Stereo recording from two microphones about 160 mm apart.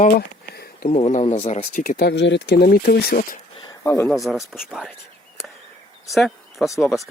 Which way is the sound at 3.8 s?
20° left (ahead or behind).